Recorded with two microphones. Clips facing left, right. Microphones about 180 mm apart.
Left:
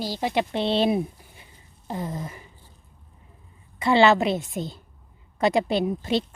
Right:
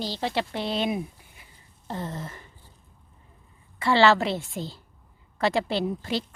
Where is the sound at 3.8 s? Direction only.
20° left (ahead or behind).